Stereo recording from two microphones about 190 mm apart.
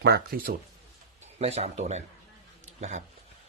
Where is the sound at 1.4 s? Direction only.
35° right (ahead or behind).